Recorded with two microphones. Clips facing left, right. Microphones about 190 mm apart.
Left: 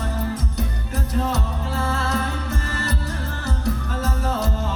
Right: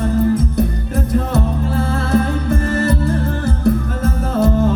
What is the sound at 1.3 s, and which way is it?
Music, 55° right (ahead or behind).